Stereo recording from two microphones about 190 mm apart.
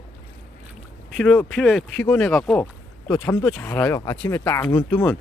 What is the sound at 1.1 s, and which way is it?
Speech, 5° left (ahead or behind).